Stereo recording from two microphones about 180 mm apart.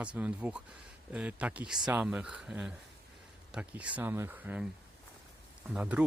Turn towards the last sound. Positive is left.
turn(degrees=-5)  # may be behind; listen again after turning